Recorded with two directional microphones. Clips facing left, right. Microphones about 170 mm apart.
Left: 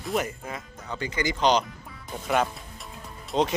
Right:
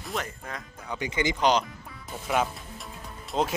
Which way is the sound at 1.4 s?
5° right (ahead or behind).